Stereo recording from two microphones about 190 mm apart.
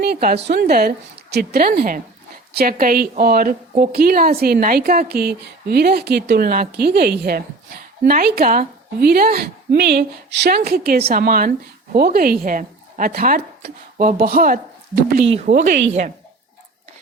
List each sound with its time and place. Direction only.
0.0 s a woman's voice: 55° right (ahead or behind)
15.4 s a woman's voice: 40° right (ahead or behind)